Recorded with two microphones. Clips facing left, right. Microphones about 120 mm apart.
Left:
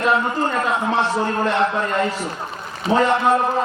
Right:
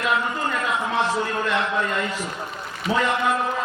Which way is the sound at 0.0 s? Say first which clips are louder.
Left 5 dB; 35° left (ahead or behind).